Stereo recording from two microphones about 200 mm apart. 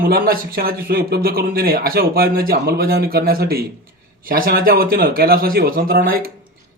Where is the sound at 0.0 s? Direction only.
50° right (ahead or behind).